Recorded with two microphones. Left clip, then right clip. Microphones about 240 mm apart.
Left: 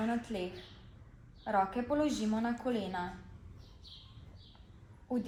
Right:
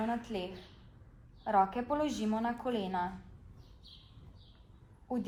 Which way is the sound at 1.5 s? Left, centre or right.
Right.